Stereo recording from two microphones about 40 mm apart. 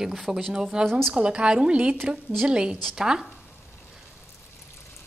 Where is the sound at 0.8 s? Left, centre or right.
Centre.